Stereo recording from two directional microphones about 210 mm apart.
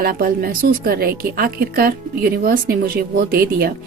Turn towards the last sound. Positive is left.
turn(degrees=-50)  # may be behind; listen again after turning